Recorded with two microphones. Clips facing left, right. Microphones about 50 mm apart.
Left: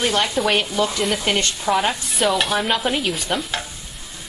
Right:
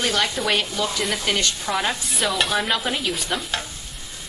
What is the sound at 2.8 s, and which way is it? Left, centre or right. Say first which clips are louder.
Speech: left 3 dB; centre.